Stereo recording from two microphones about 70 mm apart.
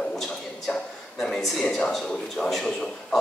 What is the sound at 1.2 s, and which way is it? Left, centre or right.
A man's voice, centre.